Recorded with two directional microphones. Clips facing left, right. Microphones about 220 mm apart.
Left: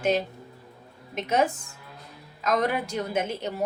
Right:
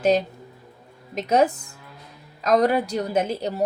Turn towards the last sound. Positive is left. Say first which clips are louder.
# right 5 dB
turn(degrees=-35)  # may be behind; listen again after turning